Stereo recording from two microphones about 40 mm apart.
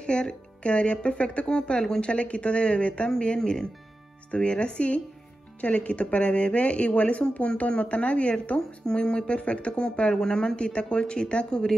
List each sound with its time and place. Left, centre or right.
0.0 s speech: left
4.3 s speech: left
8.5 s speech: centre